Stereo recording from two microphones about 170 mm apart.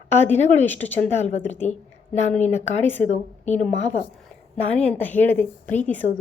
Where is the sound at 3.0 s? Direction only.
40° left (ahead or behind).